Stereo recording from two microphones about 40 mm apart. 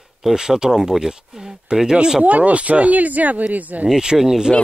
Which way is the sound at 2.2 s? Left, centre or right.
Right.